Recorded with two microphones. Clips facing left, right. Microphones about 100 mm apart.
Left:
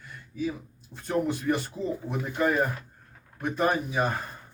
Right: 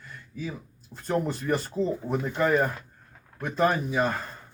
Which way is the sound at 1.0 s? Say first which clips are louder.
Left 1 dB; 40° right (ahead or behind).